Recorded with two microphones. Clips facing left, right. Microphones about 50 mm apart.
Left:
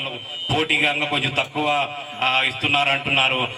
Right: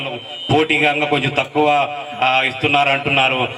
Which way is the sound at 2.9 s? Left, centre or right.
Centre.